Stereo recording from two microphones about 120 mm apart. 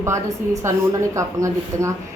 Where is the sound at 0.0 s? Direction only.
25° right (ahead or behind).